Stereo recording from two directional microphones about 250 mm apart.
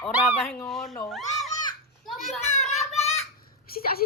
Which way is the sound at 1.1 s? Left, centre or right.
Centre.